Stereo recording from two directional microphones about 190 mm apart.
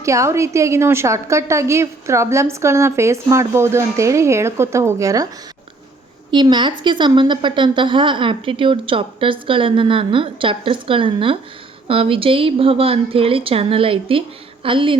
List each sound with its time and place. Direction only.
0.0 s a woman's voice: 15° right (ahead or behind)
6.3 s speech: 25° right (ahead or behind)